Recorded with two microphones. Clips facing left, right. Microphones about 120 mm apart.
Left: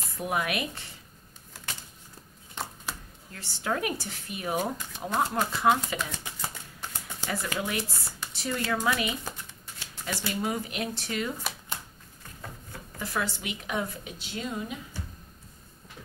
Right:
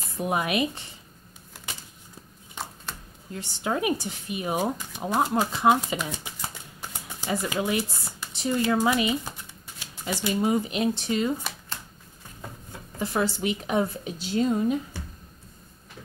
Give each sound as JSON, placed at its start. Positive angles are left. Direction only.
{"t": 0.2, "sound": "speech", "side_deg": -25}
{"t": 2.6, "sound": "a sound", "side_deg": 0}
{"t": 3.3, "sound": "speech", "side_deg": -20}
{"t": 13.0, "sound": "speech", "side_deg": -30}